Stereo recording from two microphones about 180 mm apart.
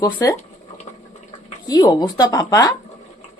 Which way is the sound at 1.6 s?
20° left (ahead or behind).